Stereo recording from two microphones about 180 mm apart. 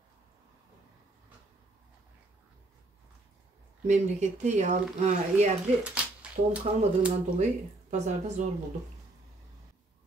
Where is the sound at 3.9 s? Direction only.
40° right (ahead or behind).